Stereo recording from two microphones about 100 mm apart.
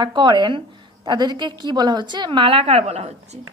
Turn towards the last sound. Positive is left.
turn(degrees=-90)